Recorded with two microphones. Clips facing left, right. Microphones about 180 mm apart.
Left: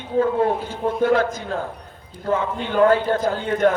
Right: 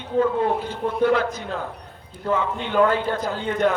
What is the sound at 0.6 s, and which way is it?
A man's voice, 45° left (ahead or behind).